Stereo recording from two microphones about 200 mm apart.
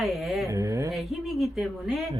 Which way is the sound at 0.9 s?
Centre (ahead or behind).